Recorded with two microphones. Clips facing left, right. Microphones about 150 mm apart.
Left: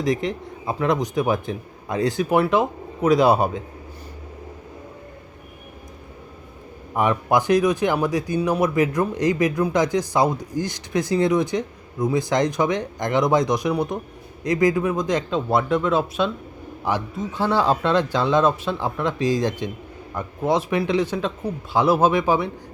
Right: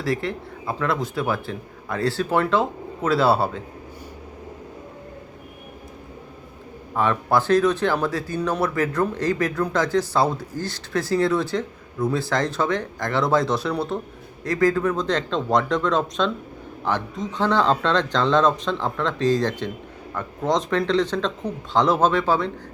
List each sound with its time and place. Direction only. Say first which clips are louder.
0.0 s speech: left 2 dB; 20° left (ahead or behind)
6.9 s speech: left 1 dB; 15° left (ahead or behind)